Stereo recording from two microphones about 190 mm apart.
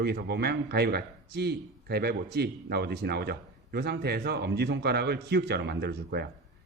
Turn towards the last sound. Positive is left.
turn(degrees=-55)  # may be behind; listen again after turning